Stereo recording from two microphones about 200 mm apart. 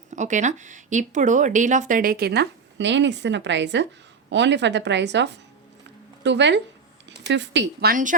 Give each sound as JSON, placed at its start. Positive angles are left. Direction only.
{"t": 0.1, "sound": "a woman's voice", "side_deg": -35}